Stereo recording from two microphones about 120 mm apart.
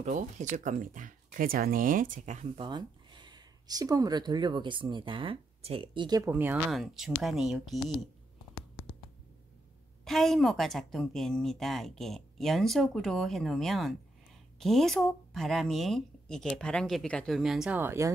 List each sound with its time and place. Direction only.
0.0 s speech: 85° right
2.5 s speech: 40° right (ahead or behind)
6.2 s speech: 15° right (ahead or behind)
6.7 s a woman's voice: centre (ahead or behind)
10.0 s a woman's voice: centre (ahead or behind)
17.4 s a woman's voice: 5° right (ahead or behind)
17.7 s speech: 20° right (ahead or behind)